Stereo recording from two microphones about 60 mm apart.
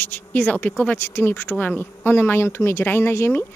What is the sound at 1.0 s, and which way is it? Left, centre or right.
A man's voice, left.